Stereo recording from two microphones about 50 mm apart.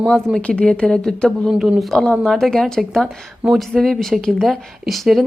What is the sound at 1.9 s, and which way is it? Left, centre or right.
Speech, centre.